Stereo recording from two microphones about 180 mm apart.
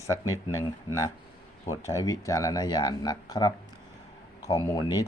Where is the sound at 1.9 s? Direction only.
15° left (ahead or behind).